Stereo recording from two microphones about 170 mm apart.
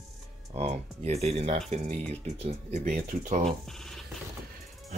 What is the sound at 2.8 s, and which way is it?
Speech, 55° right (ahead or behind).